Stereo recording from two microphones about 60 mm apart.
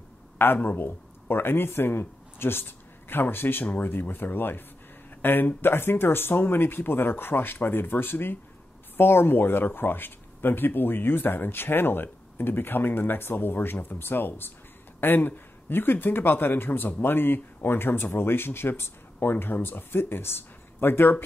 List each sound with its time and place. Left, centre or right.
0.4 s a man's voice: left